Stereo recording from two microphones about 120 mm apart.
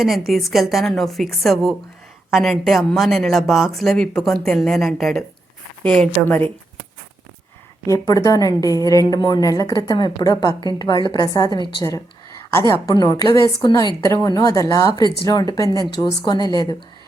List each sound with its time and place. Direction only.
0.3 s a woman's voice: centre (ahead or behind); by 6.5 s 15° left (ahead or behind)
7.9 s a woman's voice: 25° left (ahead or behind)
12.5 s a woman's voice: 20° left (ahead or behind)